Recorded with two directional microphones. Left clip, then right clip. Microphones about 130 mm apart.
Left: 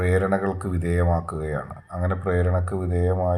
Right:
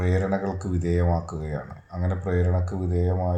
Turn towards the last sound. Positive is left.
turn(degrees=20)  # may be behind; listen again after turning